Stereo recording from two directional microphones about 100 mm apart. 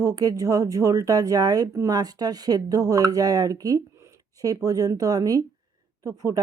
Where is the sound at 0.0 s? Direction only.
40° right (ahead or behind).